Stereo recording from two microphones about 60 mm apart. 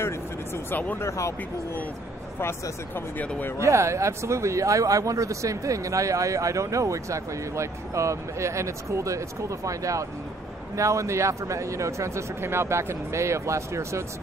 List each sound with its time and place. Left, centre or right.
0.7 s speech: left
0.9 s speech: left
3.5 s speech: right